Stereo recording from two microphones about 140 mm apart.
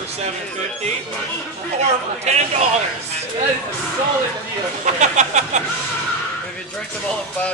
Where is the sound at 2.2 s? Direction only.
50° right (ahead or behind).